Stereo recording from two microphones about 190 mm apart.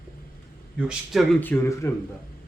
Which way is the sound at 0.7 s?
5° right (ahead or behind).